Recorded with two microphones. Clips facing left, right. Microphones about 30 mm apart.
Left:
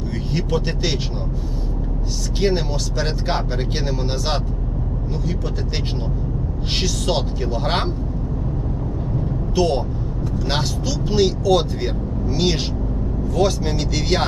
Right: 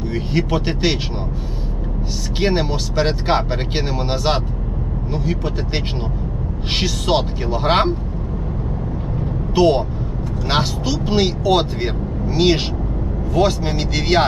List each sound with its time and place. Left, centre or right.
0.1 s speech: right
2.4 s speech: right
9.6 s speech: right